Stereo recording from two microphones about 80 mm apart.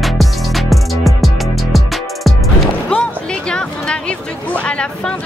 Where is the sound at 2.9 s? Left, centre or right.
Centre.